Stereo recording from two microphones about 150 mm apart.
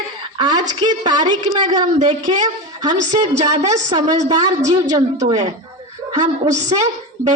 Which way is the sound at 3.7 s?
30° right (ahead or behind).